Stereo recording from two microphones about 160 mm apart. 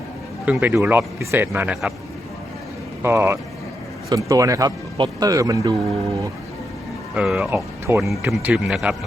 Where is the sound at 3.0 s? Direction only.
15° right (ahead or behind).